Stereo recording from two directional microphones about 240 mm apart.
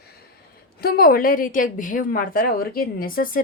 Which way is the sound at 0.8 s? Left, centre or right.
Left.